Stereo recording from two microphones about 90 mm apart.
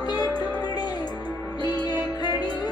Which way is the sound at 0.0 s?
50° left (ahead or behind).